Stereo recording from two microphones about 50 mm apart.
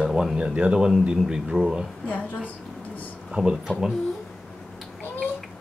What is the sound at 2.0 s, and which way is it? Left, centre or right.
Speech, left.